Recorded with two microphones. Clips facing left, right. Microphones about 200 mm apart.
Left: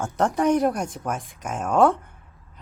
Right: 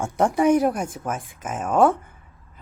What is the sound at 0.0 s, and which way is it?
A woman's voice, 10° right (ahead or behind).